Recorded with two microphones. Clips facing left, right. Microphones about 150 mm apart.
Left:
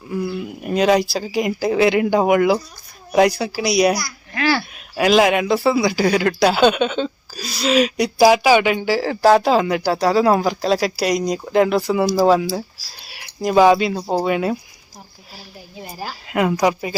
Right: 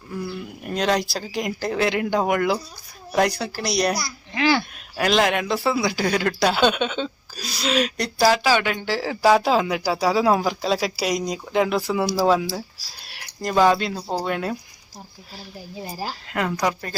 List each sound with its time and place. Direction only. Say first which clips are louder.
0.1 s speech: left 6 dB; 5° left (ahead or behind)
4.0 s a child's voice: left 1 dB; 20° right (ahead or behind)
4.9 s speech: left 5 dB; 5° left (ahead or behind)
15.8 s speech: even; 30° right (ahead or behind)
16.3 s speech: left 7 dB; 15° left (ahead or behind)